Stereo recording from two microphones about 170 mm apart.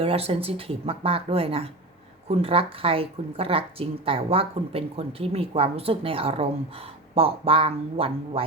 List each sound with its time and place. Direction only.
0.0 s speech: 35° right (ahead or behind)